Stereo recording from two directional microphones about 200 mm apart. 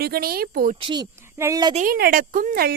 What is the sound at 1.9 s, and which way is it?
Speech, 45° right (ahead or behind).